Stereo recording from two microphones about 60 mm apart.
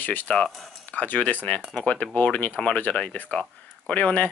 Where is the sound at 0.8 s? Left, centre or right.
Left.